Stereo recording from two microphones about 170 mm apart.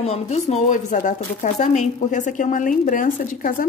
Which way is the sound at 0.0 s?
40° left (ahead or behind).